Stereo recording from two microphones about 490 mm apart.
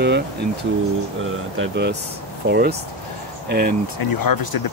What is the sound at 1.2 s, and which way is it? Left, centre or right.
Speech, right.